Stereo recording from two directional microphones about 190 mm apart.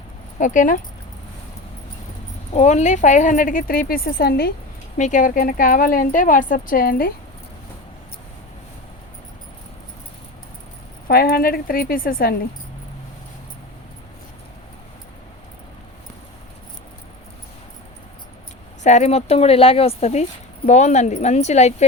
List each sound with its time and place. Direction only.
0.3 s speech: 40° left (ahead or behind)
2.5 s speech: 35° left (ahead or behind); by 4.5 s 55° left (ahead or behind)
4.9 s speech: 40° left (ahead or behind)
11.1 s speech: 55° left (ahead or behind)
18.8 s speech: 35° left (ahead or behind)